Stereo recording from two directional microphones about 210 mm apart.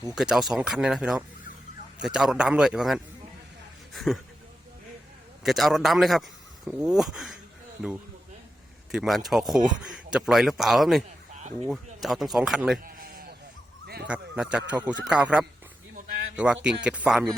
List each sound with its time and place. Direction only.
0.1 s speech: centre (ahead or behind)
5.4 s speech: centre (ahead or behind)
11.3 s a sound: 35° right (ahead or behind)
11.9 s speech: centre (ahead or behind)
12.8 s a sound: 45° right (ahead or behind)
14.1 s speech: 5° right (ahead or behind)